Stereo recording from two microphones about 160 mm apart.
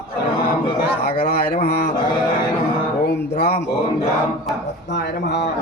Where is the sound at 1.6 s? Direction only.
60° left (ahead or behind).